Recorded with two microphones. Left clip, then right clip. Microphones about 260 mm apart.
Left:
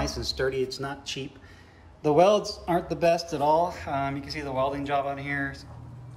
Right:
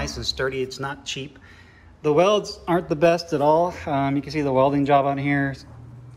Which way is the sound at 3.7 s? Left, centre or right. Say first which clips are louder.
Right 6 dB; centre.